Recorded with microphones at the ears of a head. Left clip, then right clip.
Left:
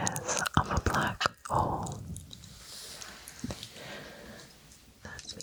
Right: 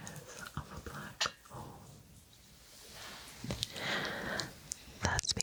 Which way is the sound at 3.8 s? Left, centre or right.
Right.